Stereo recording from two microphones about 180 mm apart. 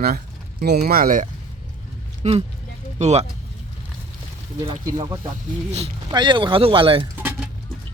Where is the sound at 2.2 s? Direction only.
40° right (ahead or behind).